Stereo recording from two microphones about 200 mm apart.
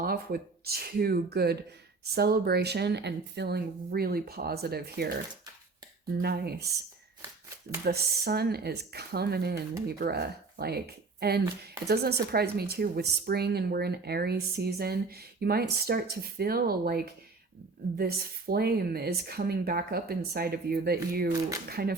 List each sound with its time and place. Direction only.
0.0 s speech: 50° right (ahead or behind)
6.2 s speech: 55° right (ahead or behind)
7.9 s speech: 50° right (ahead or behind)